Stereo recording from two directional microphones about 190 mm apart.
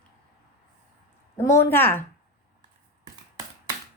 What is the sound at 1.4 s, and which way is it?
Speech, 15° left (ahead or behind).